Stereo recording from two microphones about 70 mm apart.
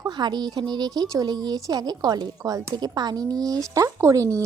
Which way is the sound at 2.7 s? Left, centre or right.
Right.